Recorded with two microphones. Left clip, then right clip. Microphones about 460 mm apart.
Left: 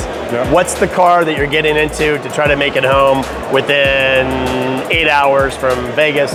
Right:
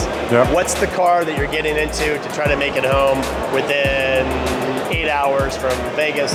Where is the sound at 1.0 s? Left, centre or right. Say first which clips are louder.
Left 6 dB; left.